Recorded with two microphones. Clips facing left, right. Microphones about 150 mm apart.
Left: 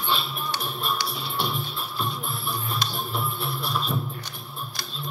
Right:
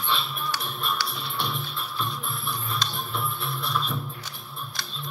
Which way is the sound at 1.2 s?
35° left (ahead or behind).